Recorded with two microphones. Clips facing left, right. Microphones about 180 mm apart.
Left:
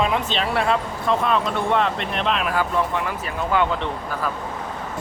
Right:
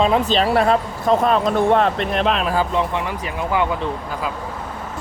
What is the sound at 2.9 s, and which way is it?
Speech, 15° right (ahead or behind).